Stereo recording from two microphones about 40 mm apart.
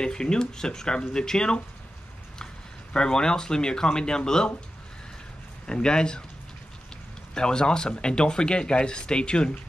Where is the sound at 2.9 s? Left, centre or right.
Centre.